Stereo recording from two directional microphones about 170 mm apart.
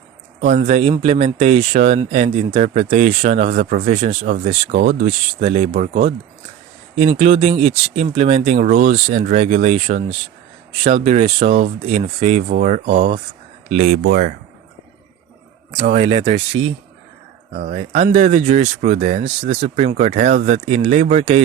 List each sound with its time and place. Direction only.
0.4 s speech: 45° right (ahead or behind)
5.0 s speech: 40° right (ahead or behind)
12.9 s speech: 30° right (ahead or behind)
13.7 s speech: 45° right (ahead or behind)
14.1 s speech: 60° right (ahead or behind)
15.7 s speech: 35° right (ahead or behind)